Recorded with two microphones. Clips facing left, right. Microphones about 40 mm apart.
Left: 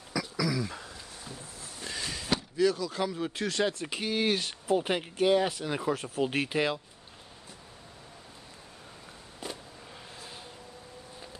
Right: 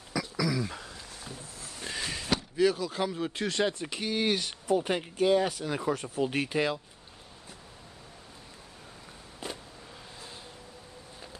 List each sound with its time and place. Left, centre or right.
0.1 s throat clearing: centre
1.8 s a sound: centre
2.5 s speech: centre
3.9 s speech: centre